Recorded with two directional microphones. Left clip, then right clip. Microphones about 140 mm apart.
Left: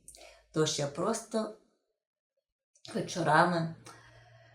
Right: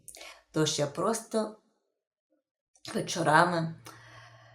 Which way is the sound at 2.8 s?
35° right (ahead or behind).